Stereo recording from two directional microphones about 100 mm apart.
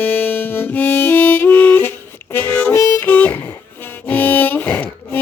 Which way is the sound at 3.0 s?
15° left (ahead or behind).